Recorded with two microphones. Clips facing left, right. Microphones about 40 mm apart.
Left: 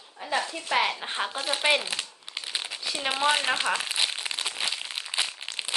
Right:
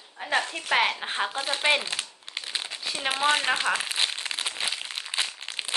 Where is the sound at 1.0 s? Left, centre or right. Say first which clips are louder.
Right 2 dB; centre.